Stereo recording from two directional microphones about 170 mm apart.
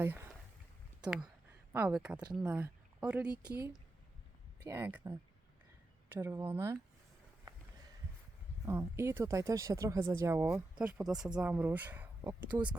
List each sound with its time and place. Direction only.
0.0 s speech: 15° right (ahead or behind)
4.6 s speech: 15° right (ahead or behind)
8.6 s speech: 15° right (ahead or behind)